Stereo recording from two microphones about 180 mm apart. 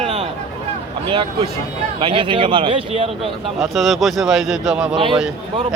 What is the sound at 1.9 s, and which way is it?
A man's voice, 30° right (ahead or behind).